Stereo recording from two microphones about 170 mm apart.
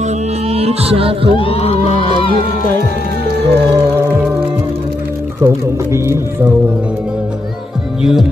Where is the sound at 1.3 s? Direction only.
35° left (ahead or behind).